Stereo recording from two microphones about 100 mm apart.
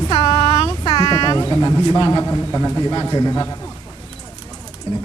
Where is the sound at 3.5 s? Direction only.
40° left (ahead or behind).